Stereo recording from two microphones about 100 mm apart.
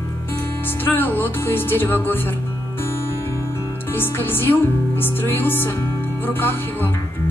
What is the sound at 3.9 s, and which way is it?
Music, 20° left (ahead or behind).